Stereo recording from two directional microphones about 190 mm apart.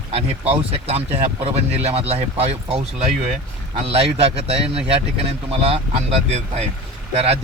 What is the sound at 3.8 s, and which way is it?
Speech, 30° right (ahead or behind).